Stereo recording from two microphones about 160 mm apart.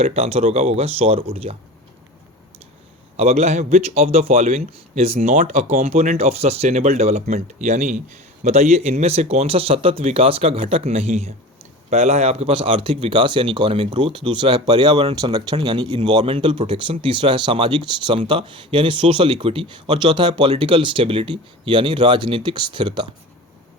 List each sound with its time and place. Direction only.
0.0 s speech: 40° right (ahead or behind)
3.2 s a man's voice: 40° right (ahead or behind)